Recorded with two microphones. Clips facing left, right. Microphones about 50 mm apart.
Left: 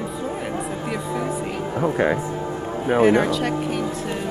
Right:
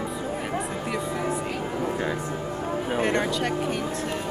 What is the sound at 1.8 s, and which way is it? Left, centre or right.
Speech, left.